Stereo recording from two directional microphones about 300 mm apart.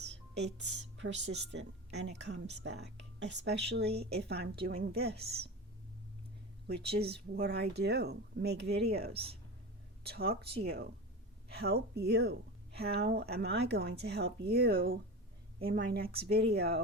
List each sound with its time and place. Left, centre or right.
0.3 s a woman's voice: right
6.7 s speech: right
11.5 s speech: right